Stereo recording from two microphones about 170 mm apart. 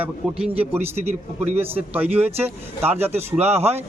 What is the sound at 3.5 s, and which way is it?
Speech, 40° right (ahead or behind).